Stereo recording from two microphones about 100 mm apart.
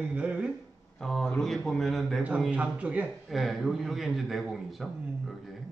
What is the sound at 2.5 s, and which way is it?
Speech, 15° right (ahead or behind).